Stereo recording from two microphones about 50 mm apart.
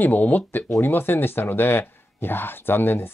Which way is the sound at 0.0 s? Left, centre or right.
Left.